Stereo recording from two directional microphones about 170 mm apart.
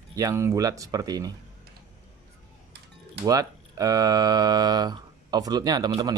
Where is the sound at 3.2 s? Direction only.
20° right (ahead or behind).